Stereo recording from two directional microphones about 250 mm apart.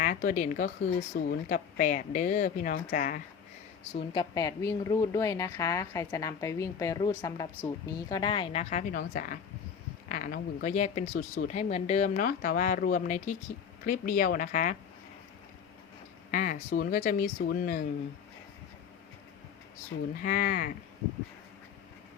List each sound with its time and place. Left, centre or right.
0.0 s a woman's voice: left
4.1 s a woman's voice: centre; by 14.8 s left
16.3 s a woman's voice: left
20.2 s a woman's voice: left